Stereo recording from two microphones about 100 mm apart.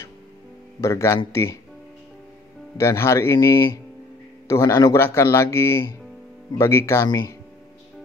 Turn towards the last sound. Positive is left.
turn(degrees=30)  # may be behind; listen again after turning